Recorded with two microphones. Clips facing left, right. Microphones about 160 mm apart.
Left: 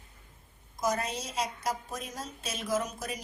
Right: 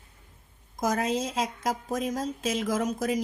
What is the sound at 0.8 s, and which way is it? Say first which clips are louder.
Speech: right 5 dB; 90° right.